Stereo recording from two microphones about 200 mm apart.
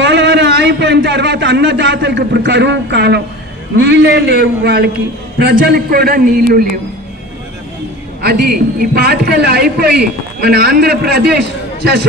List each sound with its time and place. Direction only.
0.0 s a man's voice: 60° right (ahead or behind)
8.2 s a man's voice: 50° right (ahead or behind)